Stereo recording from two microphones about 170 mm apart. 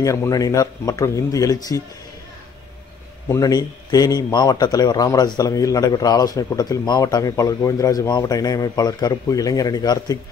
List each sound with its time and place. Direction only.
0.0 s a man's voice: 20° left (ahead or behind)
3.3 s a man's voice: 20° left (ahead or behind)